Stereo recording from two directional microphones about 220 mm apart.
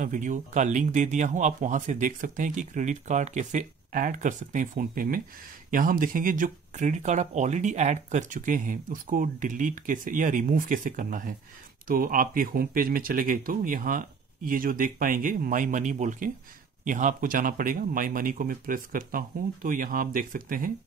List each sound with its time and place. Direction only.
0.0 s speech: 35° right (ahead or behind)